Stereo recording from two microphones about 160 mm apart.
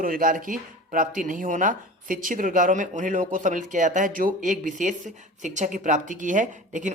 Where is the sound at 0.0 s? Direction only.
60° right (ahead or behind).